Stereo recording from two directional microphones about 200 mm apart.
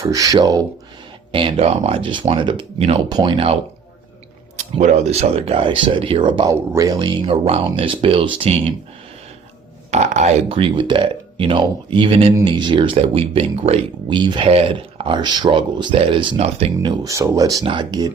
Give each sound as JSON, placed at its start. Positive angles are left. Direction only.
{"t": 0.0, "sound": "speech", "side_deg": -15}
{"t": 9.9, "sound": "speech", "side_deg": -35}